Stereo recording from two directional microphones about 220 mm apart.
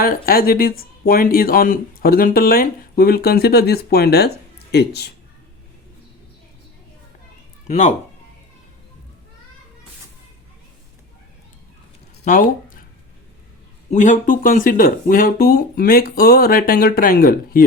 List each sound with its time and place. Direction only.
0.0 s speech: 40° left (ahead or behind)
7.7 s speech: 35° left (ahead or behind)
12.2 s speech: 40° left (ahead or behind)
13.9 s speech: 35° left (ahead or behind)